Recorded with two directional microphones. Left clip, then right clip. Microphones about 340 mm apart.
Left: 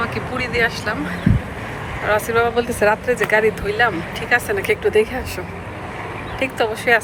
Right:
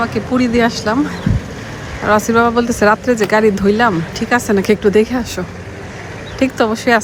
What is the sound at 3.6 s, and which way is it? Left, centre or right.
Speech, centre.